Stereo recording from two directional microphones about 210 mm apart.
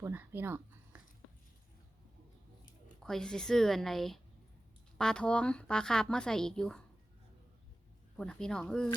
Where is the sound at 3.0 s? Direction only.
5° left (ahead or behind).